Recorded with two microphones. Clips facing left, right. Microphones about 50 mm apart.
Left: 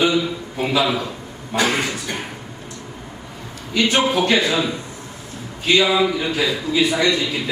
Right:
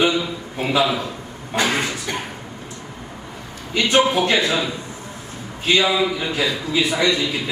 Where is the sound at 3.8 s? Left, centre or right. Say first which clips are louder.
Right 1 dB; centre.